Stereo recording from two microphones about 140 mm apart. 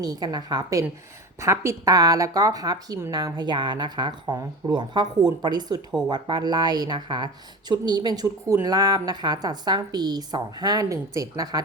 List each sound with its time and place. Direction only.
0.0 s speech: 30° right (ahead or behind)